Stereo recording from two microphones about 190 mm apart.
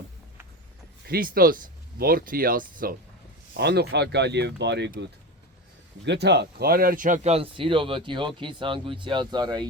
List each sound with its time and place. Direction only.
1.0 s speech: 50° right (ahead or behind)
3.6 s speech: 60° right (ahead or behind)
6.1 s speech: 60° right (ahead or behind); by 9.6 s 25° right (ahead or behind)